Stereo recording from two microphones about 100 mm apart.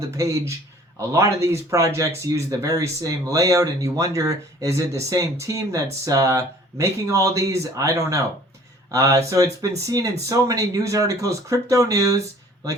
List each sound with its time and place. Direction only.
0.2 s speech: 30° right (ahead or behind)